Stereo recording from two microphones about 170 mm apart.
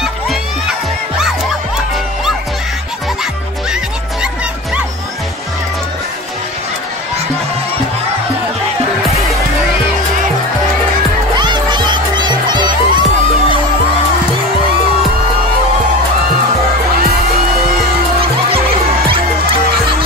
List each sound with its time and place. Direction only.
0.0 s music: 5° right (ahead or behind)
11.3 s music: 25° right (ahead or behind)